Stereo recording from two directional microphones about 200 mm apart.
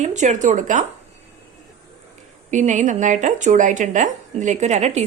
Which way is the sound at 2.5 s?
35° right (ahead or behind).